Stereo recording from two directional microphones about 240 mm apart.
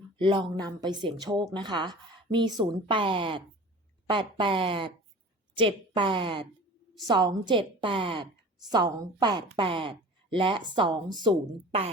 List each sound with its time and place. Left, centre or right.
0.2 s a woman's voice: right